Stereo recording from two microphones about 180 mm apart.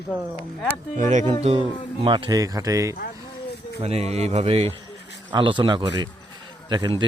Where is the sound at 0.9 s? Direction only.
40° right (ahead or behind); by 2.9 s 20° right (ahead or behind).